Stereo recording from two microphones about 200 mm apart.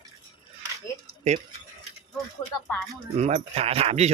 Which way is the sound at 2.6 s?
5° left (ahead or behind).